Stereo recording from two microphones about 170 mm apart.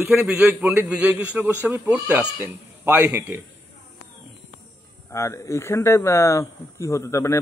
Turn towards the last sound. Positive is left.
turn(degrees=15)  # may be behind; listen again after turning